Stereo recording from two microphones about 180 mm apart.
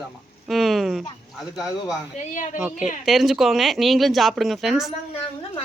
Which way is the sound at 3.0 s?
Centre (ahead or behind).